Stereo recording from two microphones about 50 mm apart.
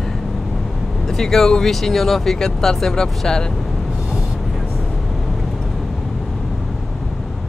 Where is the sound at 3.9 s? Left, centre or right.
Centre.